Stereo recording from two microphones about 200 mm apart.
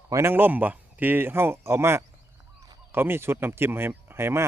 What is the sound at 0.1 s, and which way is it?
Speech, 15° right (ahead or behind).